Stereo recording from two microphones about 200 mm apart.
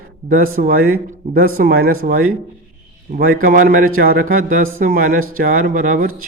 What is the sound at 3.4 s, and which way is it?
A man's voice, 45° right (ahead or behind).